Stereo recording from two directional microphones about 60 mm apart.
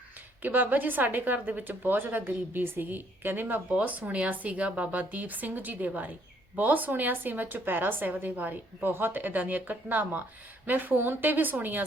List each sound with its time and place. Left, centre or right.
0.4 s a woman's voice: right